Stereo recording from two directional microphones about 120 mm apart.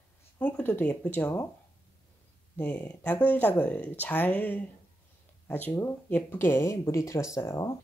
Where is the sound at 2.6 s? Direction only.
15° left (ahead or behind).